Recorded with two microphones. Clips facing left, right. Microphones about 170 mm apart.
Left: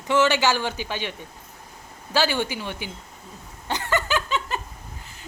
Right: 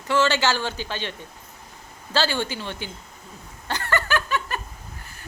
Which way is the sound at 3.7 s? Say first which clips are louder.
Even; 15° left (ahead or behind).